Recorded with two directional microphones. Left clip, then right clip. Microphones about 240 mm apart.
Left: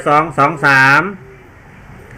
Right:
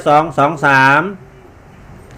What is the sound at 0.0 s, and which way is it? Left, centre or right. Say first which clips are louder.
A man's voice: even; centre.